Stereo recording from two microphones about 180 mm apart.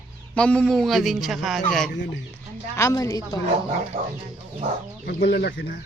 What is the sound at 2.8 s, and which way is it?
Speech, 15° left (ahead or behind).